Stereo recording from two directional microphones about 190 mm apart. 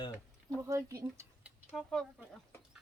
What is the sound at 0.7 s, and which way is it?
Speech, 15° right (ahead or behind).